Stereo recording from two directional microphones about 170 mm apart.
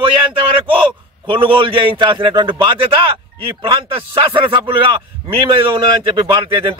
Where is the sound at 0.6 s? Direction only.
30° right (ahead or behind).